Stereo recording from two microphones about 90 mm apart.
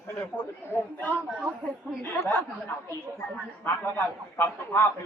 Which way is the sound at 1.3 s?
10° right (ahead or behind).